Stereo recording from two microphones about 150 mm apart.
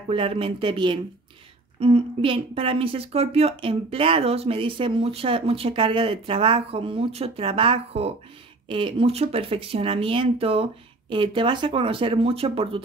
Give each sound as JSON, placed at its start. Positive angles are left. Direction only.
{"t": 0.1, "sound": "a woman's voice", "side_deg": -40}